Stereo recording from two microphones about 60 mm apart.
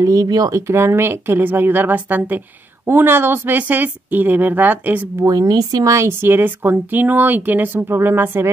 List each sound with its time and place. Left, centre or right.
0.0 s a woman's voice: right
5.2 s speech: right
6.0 s a woman's voice: right
7.9 s a woman's voice: right